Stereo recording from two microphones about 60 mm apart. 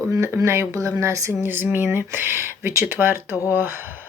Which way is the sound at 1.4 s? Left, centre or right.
Right.